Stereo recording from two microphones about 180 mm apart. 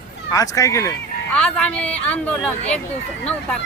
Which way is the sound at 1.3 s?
5° left (ahead or behind).